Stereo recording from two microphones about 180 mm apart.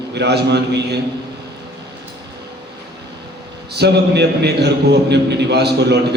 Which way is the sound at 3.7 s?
70° right (ahead or behind).